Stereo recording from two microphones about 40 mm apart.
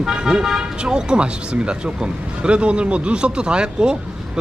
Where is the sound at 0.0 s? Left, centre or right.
Centre.